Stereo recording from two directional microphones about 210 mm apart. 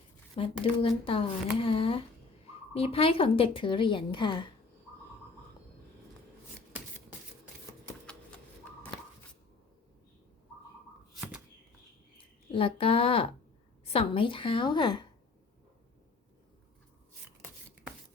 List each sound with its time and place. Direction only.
0.3 s a woman's voice: 25° left (ahead or behind)
11.1 s a sound: 5° right (ahead or behind)
12.1 s a woman's voice: 25° left (ahead or behind)